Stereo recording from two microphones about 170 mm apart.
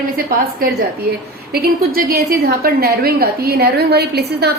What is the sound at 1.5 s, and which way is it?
A woman's voice, 60° right (ahead or behind).